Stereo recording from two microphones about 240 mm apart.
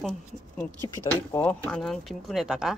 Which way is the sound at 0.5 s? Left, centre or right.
Centre.